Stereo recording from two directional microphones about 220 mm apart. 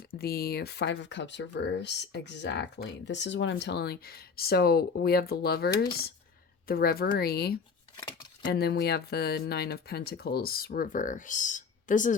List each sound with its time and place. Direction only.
0.2 s speech: 45° left (ahead or behind)